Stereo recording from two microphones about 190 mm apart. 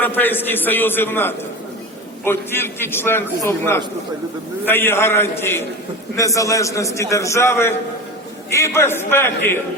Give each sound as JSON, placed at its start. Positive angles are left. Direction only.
{"t": 0.0, "sound": "a man's voice", "side_deg": 10}